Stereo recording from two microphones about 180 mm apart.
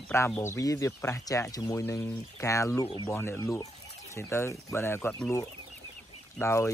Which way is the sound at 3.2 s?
15° left (ahead or behind).